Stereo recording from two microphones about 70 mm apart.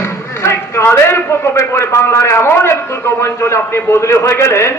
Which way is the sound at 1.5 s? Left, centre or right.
Left.